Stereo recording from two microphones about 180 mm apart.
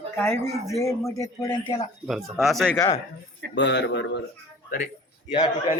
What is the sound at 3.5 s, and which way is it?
Speech, 80° left.